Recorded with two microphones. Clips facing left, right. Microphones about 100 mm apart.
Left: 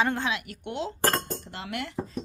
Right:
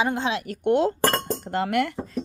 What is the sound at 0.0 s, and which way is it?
Speech, 15° right (ahead or behind).